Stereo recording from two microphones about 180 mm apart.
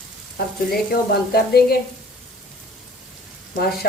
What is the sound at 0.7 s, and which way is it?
Speech, 60° left (ahead or behind).